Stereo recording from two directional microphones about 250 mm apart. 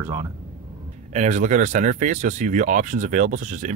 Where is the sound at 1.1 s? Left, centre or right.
Right.